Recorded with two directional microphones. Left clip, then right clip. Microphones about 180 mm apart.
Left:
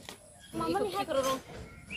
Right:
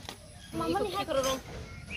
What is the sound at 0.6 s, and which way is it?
Speech, 5° right (ahead or behind).